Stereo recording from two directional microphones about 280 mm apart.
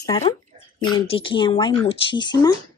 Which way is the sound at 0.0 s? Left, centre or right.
Centre.